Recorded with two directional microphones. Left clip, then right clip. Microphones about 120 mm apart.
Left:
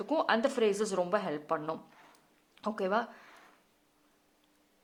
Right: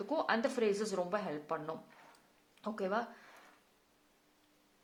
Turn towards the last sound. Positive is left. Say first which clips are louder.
# left 5 dB
turn(degrees=30)  # may be behind; listen again after turning